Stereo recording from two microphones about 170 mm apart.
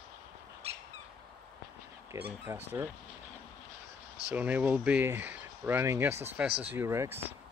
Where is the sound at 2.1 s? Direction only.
20° right (ahead or behind).